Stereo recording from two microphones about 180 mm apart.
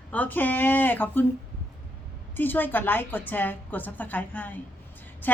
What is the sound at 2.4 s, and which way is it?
Speech, 10° left (ahead or behind).